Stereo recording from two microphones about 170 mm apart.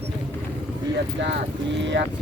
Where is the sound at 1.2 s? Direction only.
90° right.